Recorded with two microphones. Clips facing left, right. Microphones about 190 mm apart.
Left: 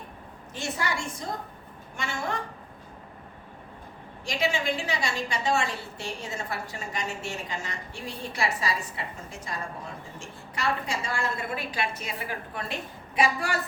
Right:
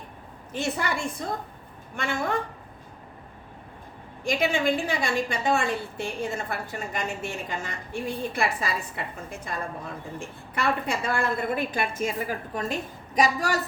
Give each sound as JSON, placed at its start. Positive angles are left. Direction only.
{"t": 0.5, "sound": "a woman's voice", "side_deg": -55}
{"t": 4.2, "sound": "a woman's voice", "side_deg": -55}